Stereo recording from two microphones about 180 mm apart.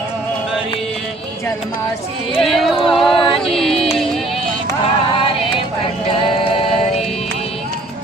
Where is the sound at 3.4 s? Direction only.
Centre (ahead or behind).